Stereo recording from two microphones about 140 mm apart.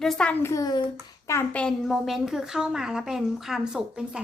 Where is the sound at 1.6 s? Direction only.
Centre (ahead or behind).